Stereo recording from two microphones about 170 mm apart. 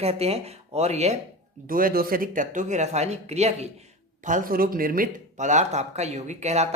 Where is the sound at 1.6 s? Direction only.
55° right (ahead or behind).